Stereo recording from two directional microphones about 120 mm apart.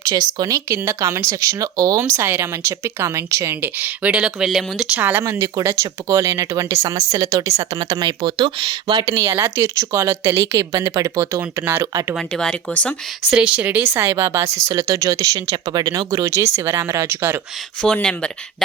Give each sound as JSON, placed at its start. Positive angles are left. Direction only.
{"t": 0.0, "sound": "speech", "side_deg": -30}
{"t": 2.1, "sound": "a woman's voice", "side_deg": -20}
{"t": 4.9, "sound": "a woman's voice", "side_deg": -15}
{"t": 5.2, "sound": "speech", "side_deg": -30}
{"t": 9.1, "sound": "speech", "side_deg": -25}
{"t": 12.1, "sound": "speech", "side_deg": 5}
{"t": 13.3, "sound": "speech", "side_deg": -10}
{"t": 17.8, "sound": "speech", "side_deg": 10}